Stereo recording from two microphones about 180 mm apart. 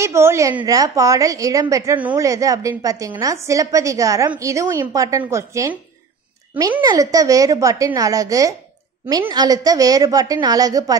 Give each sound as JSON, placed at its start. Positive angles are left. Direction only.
{"t": 0.0, "sound": "a woman's voice", "side_deg": -15}
{"t": 6.8, "sound": "a woman's voice", "side_deg": -20}